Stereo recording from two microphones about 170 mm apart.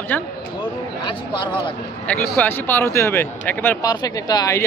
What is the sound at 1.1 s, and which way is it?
Speech, 25° left (ahead or behind).